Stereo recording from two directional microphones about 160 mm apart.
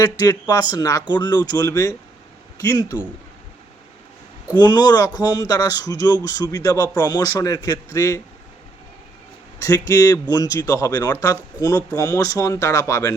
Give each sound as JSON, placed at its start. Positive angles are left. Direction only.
{"t": 0.0, "sound": "speech", "side_deg": 25}
{"t": 4.5, "sound": "speech", "side_deg": 25}
{"t": 9.6, "sound": "speech", "side_deg": 20}